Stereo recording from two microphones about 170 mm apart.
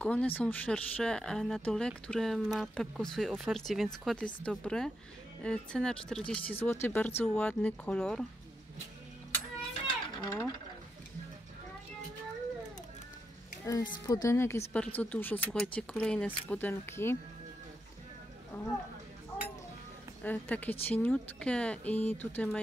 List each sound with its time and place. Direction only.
0.0 s speech: 10° left (ahead or behind)
9.8 s a sound: 25° left (ahead or behind)
13.7 s speech: 20° left (ahead or behind)
18.5 s speech: 5° left (ahead or behind)
20.2 s speech: 10° left (ahead or behind)